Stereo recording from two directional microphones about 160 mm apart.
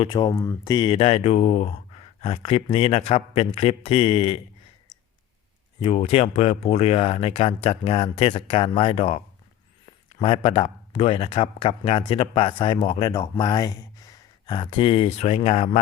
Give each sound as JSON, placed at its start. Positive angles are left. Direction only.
{"t": 0.0, "sound": "speech", "side_deg": 30}
{"t": 0.9, "sound": "speech", "side_deg": 40}
{"t": 5.8, "sound": "speech", "side_deg": 35}